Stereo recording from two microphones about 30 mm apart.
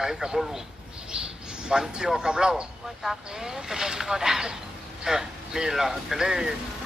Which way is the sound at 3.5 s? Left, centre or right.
Right.